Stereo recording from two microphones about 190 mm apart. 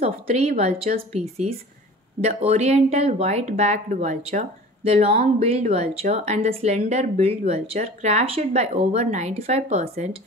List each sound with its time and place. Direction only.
0.0 s speech: 35° right (ahead or behind)